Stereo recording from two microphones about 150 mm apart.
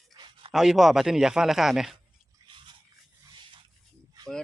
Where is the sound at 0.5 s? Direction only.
5° right (ahead or behind).